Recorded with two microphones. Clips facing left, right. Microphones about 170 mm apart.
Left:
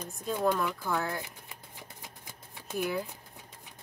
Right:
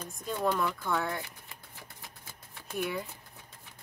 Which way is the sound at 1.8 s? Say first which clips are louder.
Left 2 dB; 20° left (ahead or behind).